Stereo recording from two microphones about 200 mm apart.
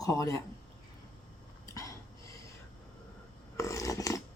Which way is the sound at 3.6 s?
15° left (ahead or behind).